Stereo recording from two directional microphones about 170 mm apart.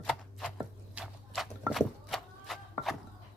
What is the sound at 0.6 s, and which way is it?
Horse, 5° right (ahead or behind).